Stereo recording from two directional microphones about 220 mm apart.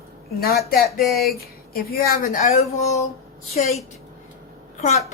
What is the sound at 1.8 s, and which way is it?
Speech, 45° left (ahead or behind).